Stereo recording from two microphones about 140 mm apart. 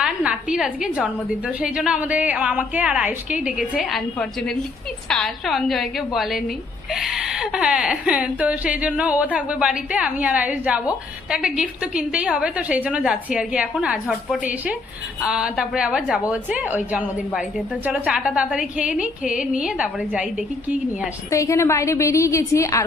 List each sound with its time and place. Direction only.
0.0 s a woman's voice: 5° right (ahead or behind)
21.2 s a woman's voice: 20° left (ahead or behind)